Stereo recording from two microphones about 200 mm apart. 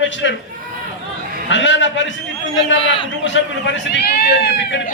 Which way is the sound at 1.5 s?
65° left (ahead or behind).